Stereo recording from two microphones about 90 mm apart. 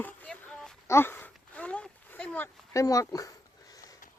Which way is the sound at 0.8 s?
25° left (ahead or behind).